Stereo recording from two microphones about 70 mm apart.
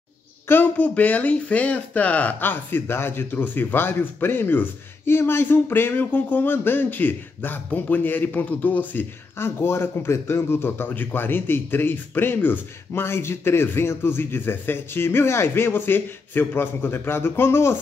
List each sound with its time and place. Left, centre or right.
0.5 s speech: left